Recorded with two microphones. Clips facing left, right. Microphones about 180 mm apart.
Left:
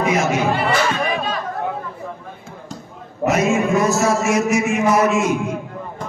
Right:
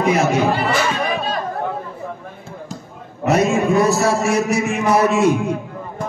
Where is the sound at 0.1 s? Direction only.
35° right (ahead or behind).